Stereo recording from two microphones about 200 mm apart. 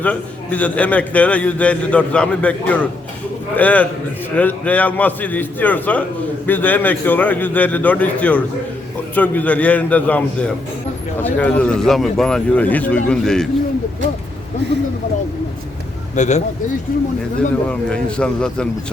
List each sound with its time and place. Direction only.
0.0 s a man's voice: 5° left (ahead or behind)
16.1 s speech: 35° left (ahead or behind)
17.7 s speech: 5° left (ahead or behind)